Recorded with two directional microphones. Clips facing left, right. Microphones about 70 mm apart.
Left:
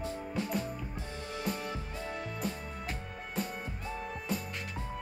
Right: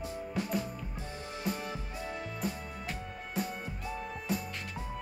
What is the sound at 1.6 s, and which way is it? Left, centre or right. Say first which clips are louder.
Music: even; right.